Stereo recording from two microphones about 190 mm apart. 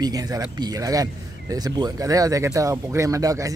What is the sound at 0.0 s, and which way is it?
Speech, 20° right (ahead or behind).